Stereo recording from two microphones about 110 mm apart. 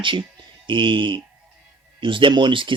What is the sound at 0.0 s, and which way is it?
Speech, 50° right (ahead or behind).